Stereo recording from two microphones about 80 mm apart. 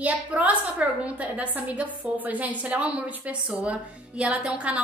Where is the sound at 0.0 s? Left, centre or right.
Centre.